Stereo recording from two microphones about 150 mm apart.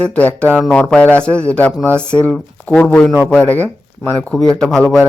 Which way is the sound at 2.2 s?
5° left (ahead or behind).